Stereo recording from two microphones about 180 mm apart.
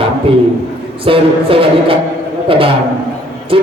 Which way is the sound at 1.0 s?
30° right (ahead or behind).